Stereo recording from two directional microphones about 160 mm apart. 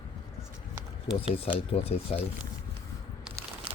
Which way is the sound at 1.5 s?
40° left (ahead or behind).